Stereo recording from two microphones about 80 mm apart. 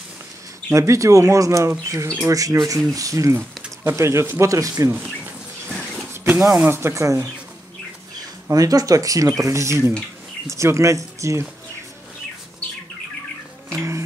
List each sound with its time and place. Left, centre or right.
0.7 s speech: right
6.2 s speech: right
8.5 s speech: right